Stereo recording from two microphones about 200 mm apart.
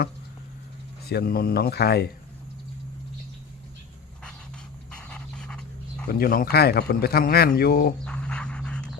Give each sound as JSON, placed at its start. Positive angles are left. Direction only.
{"t": 1.1, "sound": "speech", "side_deg": 50}
{"t": 4.9, "sound": "pant", "side_deg": 5}
{"t": 6.1, "sound": "speech", "side_deg": 50}
{"t": 8.0, "sound": "dog", "side_deg": 5}